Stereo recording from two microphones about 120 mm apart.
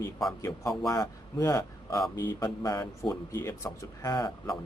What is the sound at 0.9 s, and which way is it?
Speech, 25° left (ahead or behind).